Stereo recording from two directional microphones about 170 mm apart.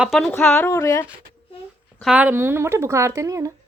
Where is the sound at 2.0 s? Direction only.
5° right (ahead or behind).